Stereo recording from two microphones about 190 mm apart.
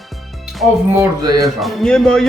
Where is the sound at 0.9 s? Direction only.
15° right (ahead or behind).